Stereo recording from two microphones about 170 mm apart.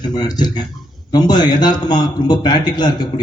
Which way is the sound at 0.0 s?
25° left (ahead or behind).